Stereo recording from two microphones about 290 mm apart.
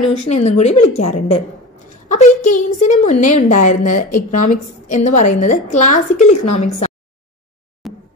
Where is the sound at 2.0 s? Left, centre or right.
Left.